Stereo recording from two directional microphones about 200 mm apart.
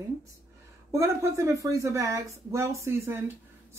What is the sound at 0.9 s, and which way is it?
Speech, 15° right (ahead or behind).